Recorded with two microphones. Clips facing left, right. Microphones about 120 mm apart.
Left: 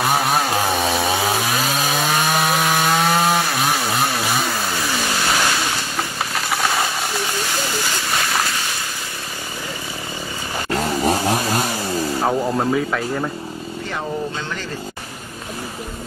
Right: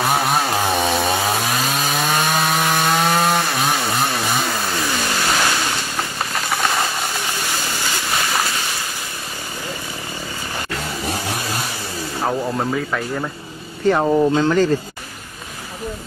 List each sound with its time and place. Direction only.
0.0 s chainsaw: centre (ahead or behind)
5.9 s a sound: centre (ahead or behind)
8.1 s boat: centre (ahead or behind)
10.7 s chainsaw: 40° left (ahead or behind)
12.3 s speech: 5° left (ahead or behind)
13.8 s speech: 40° right (ahead or behind)